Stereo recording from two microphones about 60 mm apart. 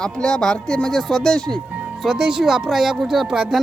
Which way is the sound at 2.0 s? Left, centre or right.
Centre.